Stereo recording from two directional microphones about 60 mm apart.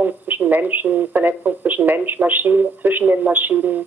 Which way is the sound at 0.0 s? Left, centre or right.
Right.